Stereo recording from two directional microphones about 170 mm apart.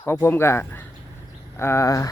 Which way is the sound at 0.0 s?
10° left (ahead or behind).